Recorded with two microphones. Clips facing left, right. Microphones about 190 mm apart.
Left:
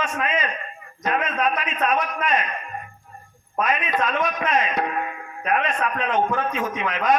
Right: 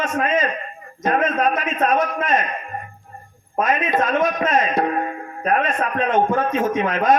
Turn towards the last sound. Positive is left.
turn(degrees=-40)  # may be behind; listen again after turning